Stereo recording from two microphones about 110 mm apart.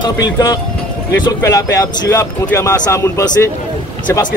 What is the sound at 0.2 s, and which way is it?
A man's voice, 35° left (ahead or behind).